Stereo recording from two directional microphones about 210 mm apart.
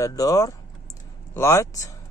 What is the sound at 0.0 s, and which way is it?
Speech, 15° left (ahead or behind).